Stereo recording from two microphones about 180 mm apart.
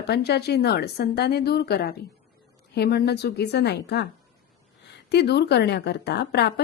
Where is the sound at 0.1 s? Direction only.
65° left (ahead or behind).